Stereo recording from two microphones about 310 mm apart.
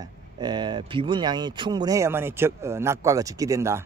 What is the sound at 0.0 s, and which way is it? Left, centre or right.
Speech, centre.